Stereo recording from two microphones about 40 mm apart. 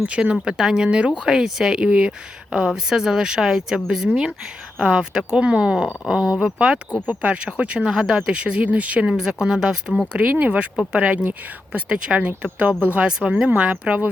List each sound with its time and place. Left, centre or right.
0.0 s speech: right
0.4 s speech: centre
0.9 s speech: right
1.3 s speech: centre
7.1 s speech: right
8.6 s speech: right
9.0 s speech: right
13.1 s speech: right
13.5 s speech: right